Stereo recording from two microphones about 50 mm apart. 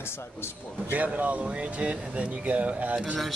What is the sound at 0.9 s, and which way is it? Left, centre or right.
Speech, right.